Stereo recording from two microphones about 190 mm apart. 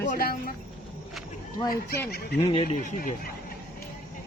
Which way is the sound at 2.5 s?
35° left (ahead or behind).